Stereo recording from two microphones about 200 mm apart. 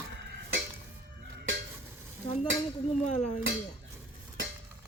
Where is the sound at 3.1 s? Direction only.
35° left (ahead or behind).